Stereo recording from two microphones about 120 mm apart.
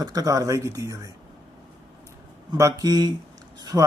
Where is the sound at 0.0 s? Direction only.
30° right (ahead or behind).